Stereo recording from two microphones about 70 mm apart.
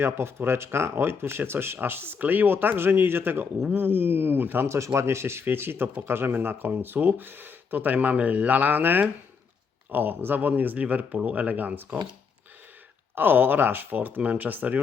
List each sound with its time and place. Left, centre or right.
0.0 s speech: right
13.1 s speech: right